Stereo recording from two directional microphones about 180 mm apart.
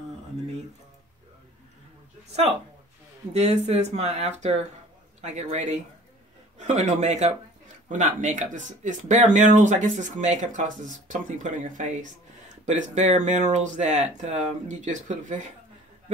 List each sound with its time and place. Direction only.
3.3 s speech: 35° right (ahead or behind)